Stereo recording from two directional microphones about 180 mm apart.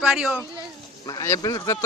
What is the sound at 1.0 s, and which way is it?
Speech, 20° left (ahead or behind).